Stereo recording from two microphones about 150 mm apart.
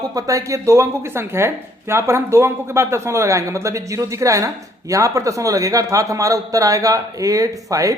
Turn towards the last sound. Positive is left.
turn(degrees=-20)  # may be behind; listen again after turning